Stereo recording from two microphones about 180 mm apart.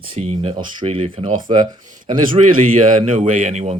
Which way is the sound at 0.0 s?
30° right (ahead or behind).